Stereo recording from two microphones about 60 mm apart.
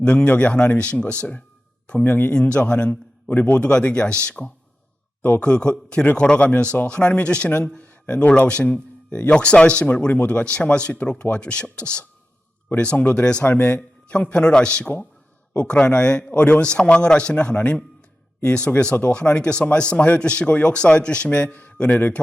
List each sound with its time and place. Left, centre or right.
0.0 s speech: left